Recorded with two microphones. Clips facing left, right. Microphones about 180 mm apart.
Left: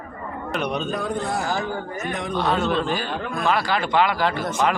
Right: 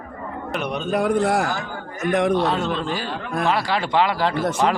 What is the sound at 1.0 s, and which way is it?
Speech, 75° right (ahead or behind).